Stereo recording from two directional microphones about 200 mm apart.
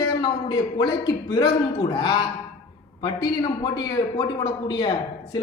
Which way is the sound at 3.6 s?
20° left (ahead or behind).